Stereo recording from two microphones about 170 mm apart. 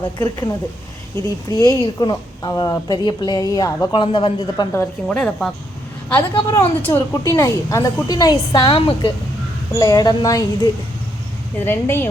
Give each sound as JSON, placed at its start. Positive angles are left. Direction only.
{"t": 0.2, "sound": "speech", "side_deg": 25}
{"t": 4.8, "sound": "speech", "side_deg": 5}
{"t": 6.3, "sound": "speech", "side_deg": 30}
{"t": 6.8, "sound": "a woman's voice", "side_deg": 15}